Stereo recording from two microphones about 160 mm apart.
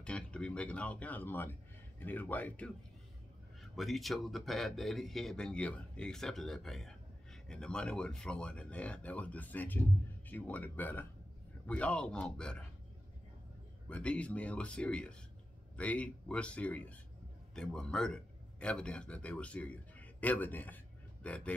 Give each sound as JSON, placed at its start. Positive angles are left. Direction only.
{"t": 0.0, "sound": "speech", "side_deg": 5}
{"t": 3.7, "sound": "a man's voice", "side_deg": 0}
{"t": 13.8, "sound": "a man's voice", "side_deg": 5}